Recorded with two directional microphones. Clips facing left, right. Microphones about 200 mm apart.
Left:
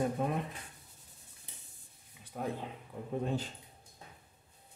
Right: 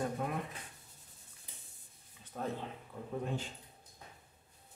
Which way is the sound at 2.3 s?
10° left (ahead or behind).